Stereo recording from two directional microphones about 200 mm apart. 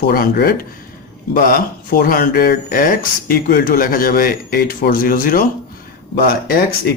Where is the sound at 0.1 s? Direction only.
50° left (ahead or behind).